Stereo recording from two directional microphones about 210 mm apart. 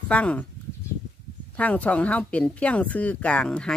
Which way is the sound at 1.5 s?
5° left (ahead or behind).